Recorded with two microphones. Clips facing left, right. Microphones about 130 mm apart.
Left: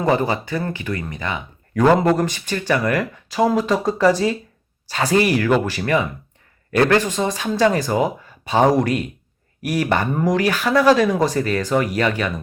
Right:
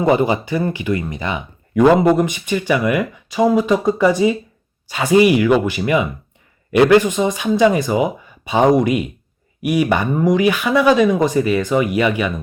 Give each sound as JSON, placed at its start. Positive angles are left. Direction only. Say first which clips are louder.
{"t": 0.0, "sound": "speech", "louder": "right 4 dB", "side_deg": -15}
{"t": 2.0, "sound": "speech", "louder": "right 4 dB", "side_deg": 0}
{"t": 7.2, "sound": "speech", "louder": "right 4 dB", "side_deg": -5}